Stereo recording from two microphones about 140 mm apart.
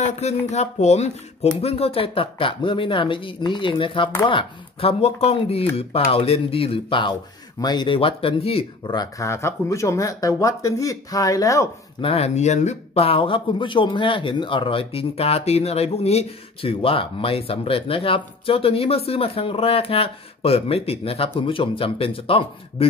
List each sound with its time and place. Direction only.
0.0 s speech: 55° left (ahead or behind)
8.8 s speech: 30° left (ahead or behind)
12.0 s speech: 45° left (ahead or behind)